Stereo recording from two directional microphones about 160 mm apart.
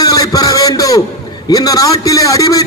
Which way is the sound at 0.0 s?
20° left (ahead or behind).